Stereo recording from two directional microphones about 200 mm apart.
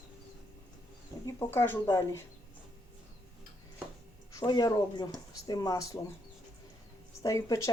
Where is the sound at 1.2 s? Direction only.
10° left (ahead or behind).